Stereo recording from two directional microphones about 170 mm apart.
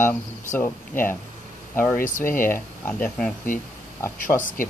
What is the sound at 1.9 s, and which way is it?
Speech, 50° left (ahead or behind).